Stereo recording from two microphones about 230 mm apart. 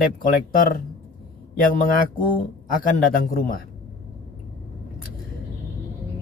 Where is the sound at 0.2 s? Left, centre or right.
Left.